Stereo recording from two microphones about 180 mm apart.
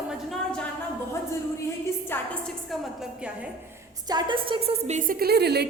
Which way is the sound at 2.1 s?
5° left (ahead or behind).